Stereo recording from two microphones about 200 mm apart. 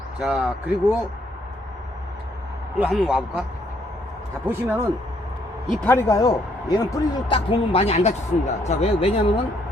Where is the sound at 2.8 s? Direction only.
5° right (ahead or behind).